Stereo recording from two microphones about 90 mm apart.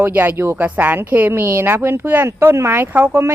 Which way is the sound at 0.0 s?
20° right (ahead or behind).